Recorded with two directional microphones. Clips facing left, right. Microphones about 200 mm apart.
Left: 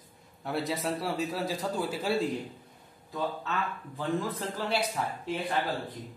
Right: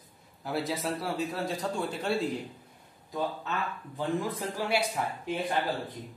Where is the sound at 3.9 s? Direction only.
15° right (ahead or behind).